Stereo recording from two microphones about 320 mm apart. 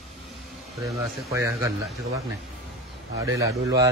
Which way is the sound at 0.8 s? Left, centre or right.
Centre.